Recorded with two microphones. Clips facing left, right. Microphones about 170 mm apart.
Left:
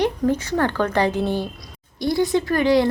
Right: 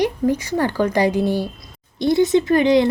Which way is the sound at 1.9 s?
20° right (ahead or behind).